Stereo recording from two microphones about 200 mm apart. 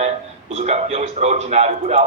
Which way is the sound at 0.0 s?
30° right (ahead or behind).